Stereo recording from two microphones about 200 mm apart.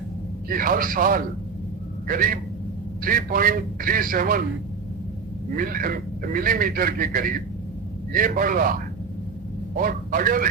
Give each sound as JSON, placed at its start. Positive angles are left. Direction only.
{"t": 0.4, "sound": "speech", "side_deg": -45}
{"t": 5.5, "sound": "speech", "side_deg": -45}